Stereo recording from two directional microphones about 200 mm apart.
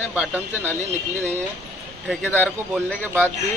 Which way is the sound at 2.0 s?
5° left (ahead or behind).